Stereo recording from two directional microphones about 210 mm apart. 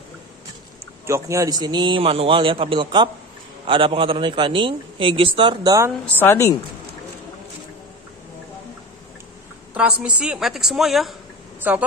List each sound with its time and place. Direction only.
1.0 s a man's voice: 15° right (ahead or behind)
6.0 s speech: 10° left (ahead or behind)
9.8 s a woman's voice: 5° right (ahead or behind)